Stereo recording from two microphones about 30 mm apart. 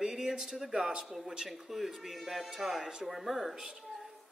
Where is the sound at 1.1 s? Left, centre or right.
Centre.